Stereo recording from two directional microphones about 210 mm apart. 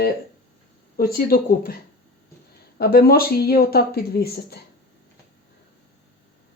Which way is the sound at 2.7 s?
45° left (ahead or behind).